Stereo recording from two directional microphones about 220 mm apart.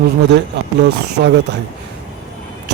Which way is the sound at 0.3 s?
50° right (ahead or behind).